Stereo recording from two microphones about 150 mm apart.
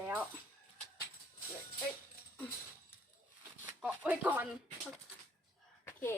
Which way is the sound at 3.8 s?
10° right (ahead or behind).